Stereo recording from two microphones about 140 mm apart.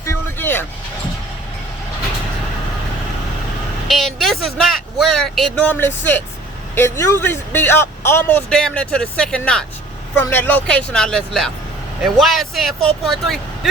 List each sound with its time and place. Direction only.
0.0 s vehicle: 15° left (ahead or behind)
3.8 s speech: centre (ahead or behind)